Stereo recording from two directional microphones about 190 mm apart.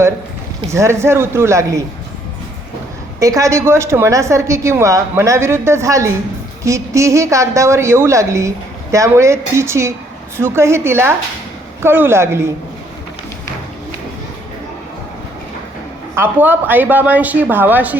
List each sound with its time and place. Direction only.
0.7 s a woman's voice: 15° right (ahead or behind)
3.2 s a woman's voice: 15° right (ahead or behind)
16.1 s a woman's voice: 10° right (ahead or behind)